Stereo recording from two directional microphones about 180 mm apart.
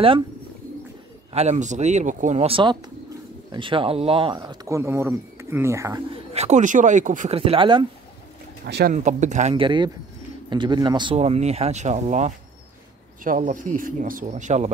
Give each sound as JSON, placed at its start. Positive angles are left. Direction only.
{"t": 1.3, "sound": "speech", "side_deg": -40}
{"t": 6.3, "sound": "speech", "side_deg": -40}
{"t": 7.3, "sound": "speech", "side_deg": -30}
{"t": 8.6, "sound": "speech", "side_deg": -65}
{"t": 8.9, "sound": "speech", "side_deg": -40}
{"t": 11.1, "sound": "speech", "side_deg": -35}